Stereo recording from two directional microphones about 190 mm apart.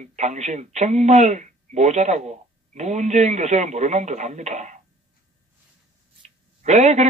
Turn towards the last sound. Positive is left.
turn(degrees=-35)  # may be behind; listen again after turning